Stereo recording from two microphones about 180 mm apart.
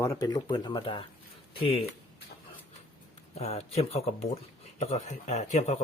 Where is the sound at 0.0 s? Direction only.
20° left (ahead or behind).